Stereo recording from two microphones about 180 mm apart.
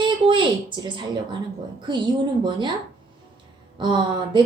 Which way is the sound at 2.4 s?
25° right (ahead or behind).